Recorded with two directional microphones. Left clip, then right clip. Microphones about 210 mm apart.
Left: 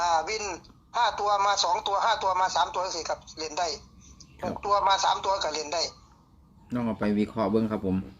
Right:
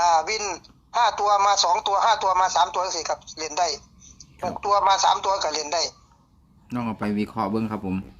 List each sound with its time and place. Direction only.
0.0 s a man's voice: 10° right (ahead or behind)
6.7 s speech: 30° right (ahead or behind)